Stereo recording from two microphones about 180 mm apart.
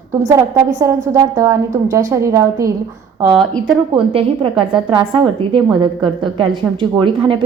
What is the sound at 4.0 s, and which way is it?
A woman's voice, 30° right (ahead or behind).